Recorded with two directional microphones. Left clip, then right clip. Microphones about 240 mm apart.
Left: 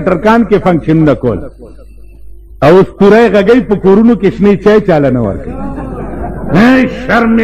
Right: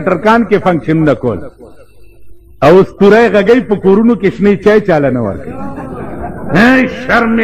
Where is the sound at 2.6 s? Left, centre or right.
Left.